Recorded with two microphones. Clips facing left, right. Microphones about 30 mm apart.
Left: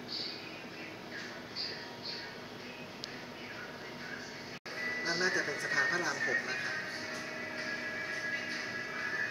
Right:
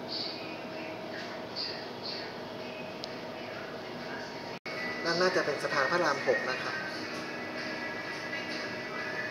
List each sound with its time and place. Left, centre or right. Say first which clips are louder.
4.7 s speech: right 4 dB; right
7.5 s vehicle: even; right